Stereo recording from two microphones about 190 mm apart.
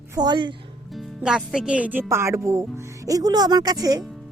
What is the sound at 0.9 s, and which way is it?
Speech, centre (ahead or behind).